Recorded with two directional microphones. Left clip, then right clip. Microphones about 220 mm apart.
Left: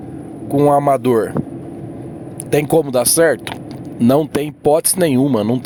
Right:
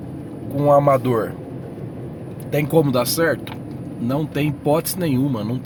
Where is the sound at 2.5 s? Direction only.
45° left (ahead or behind).